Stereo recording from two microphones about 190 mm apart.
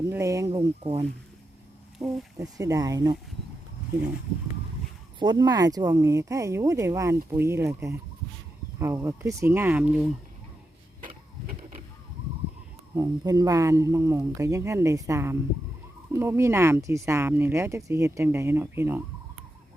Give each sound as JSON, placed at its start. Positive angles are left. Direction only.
{"t": 0.1, "sound": "speech", "side_deg": -15}
{"t": 2.0, "sound": "speech", "side_deg": -20}
{"t": 5.2, "sound": "speech", "side_deg": -20}
{"t": 12.9, "sound": "speech", "side_deg": -20}